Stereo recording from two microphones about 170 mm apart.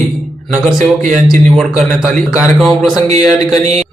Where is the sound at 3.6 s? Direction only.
40° right (ahead or behind).